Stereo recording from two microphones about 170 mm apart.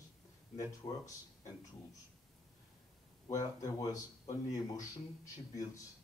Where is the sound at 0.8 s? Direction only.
20° left (ahead or behind).